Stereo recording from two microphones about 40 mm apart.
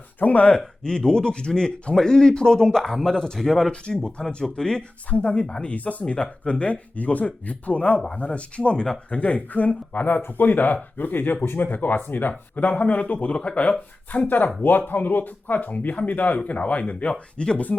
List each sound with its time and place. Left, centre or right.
0.2 s speech: left
0.9 s speech: centre
2.9 s speech: centre
3.7 s speech: left
5.1 s speech: left
5.7 s speech: left
12.5 s speech: left
13.3 s speech: left